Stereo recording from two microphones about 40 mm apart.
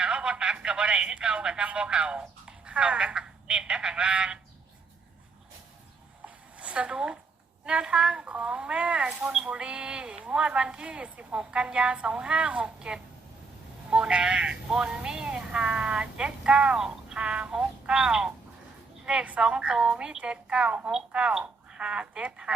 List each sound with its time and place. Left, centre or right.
0.0 s speech: right
6.2 s a sound: right
7.6 s speech: right
9.0 s speech: centre
19.2 s a woman's voice: right
19.5 s speech: right